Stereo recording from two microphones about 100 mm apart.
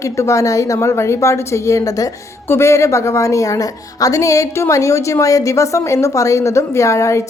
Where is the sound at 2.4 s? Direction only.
25° left (ahead or behind).